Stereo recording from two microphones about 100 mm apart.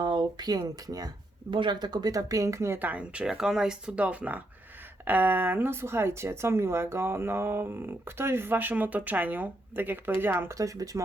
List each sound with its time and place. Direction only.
0.0 s speech: 50° right (ahead or behind)
1.5 s speech: 55° right (ahead or behind); by 11.0 s 35° right (ahead or behind)